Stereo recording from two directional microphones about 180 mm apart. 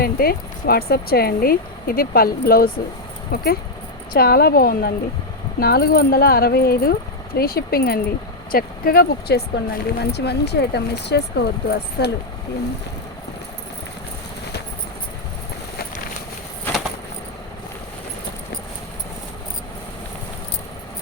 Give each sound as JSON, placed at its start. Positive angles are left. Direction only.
{"t": 0.0, "sound": "speech", "side_deg": 55}